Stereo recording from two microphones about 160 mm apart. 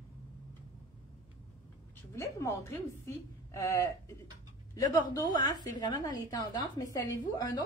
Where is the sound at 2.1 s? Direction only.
15° left (ahead or behind).